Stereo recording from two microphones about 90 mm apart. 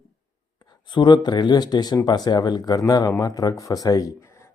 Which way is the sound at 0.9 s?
55° left (ahead or behind).